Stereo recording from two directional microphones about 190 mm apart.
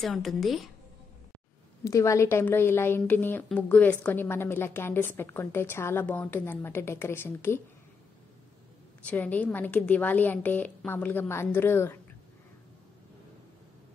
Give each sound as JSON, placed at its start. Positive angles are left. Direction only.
{"t": 0.0, "sound": "a woman's voice", "side_deg": 0}
{"t": 1.9, "sound": "a woman's voice", "side_deg": 15}
{"t": 9.0, "sound": "a woman's voice", "side_deg": 10}